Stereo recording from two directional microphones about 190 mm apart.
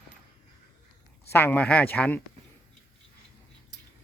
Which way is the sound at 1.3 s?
10° left (ahead or behind).